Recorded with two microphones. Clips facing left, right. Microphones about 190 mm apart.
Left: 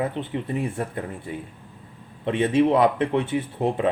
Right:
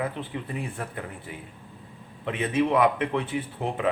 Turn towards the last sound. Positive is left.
turn(degrees=25)  # may be behind; listen again after turning